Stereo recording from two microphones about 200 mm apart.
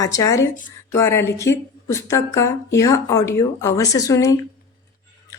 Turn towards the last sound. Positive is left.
turn(degrees=15)  # may be behind; listen again after turning